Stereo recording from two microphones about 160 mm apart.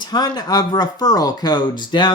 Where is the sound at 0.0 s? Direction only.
25° left (ahead or behind).